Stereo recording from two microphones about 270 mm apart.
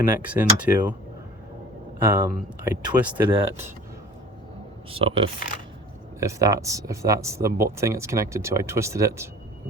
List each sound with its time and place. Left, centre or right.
0.2 s speech: centre
2.0 s speech: centre
3.2 s speech: centre
4.9 s speech: centre